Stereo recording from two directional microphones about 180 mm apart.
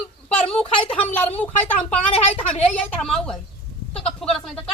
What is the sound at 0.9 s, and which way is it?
A woman's voice, 10° left (ahead or behind).